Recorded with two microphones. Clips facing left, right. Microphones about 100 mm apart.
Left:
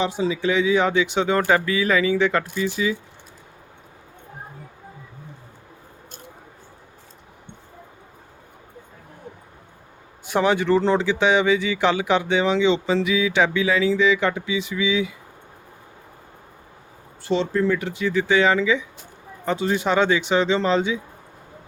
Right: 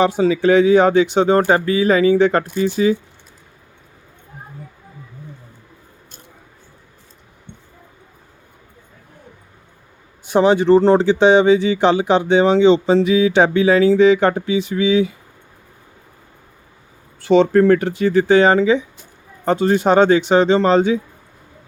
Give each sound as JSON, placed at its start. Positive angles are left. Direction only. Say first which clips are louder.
{"t": 0.0, "sound": "speech", "louder": "right 8 dB", "side_deg": -55}
{"t": 10.3, "sound": "speech", "louder": "right 7 dB", "side_deg": -25}
{"t": 17.2, "sound": "speech", "louder": "right 9 dB", "side_deg": -65}